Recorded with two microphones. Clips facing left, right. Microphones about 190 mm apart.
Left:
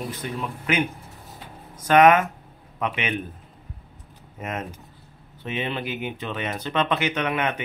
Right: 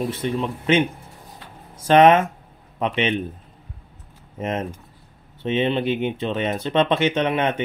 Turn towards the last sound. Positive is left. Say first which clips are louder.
# right 4 dB
turn(degrees=-25)  # may be behind; listen again after turning